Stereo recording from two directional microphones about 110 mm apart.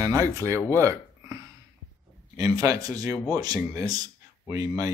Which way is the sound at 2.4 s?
30° right (ahead or behind).